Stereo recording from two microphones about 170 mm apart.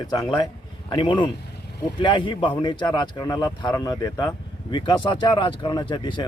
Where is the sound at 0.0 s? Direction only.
25° left (ahead or behind).